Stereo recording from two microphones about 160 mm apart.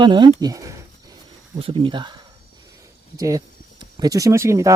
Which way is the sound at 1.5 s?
35° right (ahead or behind).